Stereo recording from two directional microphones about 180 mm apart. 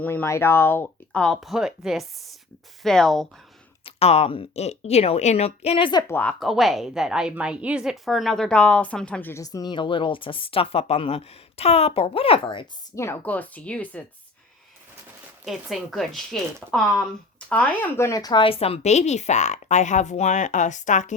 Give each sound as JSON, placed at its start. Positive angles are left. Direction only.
{"t": 0.0, "sound": "a woman's voice", "side_deg": 10}
{"t": 3.8, "sound": "speech", "side_deg": 35}
{"t": 6.4, "sound": "a woman's voice", "side_deg": 0}
{"t": 13.0, "sound": "a woman's voice", "side_deg": 10}
{"t": 15.4, "sound": "speech", "side_deg": 0}
{"t": 17.5, "sound": "speech", "side_deg": 10}